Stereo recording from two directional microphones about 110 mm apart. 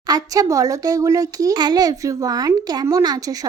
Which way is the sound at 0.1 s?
30° right (ahead or behind).